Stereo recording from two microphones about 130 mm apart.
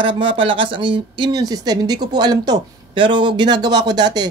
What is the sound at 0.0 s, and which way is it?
Speech, 40° right (ahead or behind).